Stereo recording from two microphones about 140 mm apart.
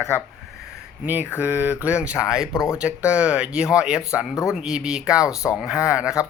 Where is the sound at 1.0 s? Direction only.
15° right (ahead or behind).